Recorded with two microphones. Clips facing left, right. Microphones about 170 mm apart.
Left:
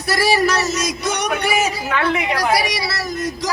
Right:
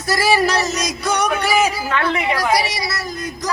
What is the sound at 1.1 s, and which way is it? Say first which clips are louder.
Music: right 3 dB; 60° left (ahead or behind).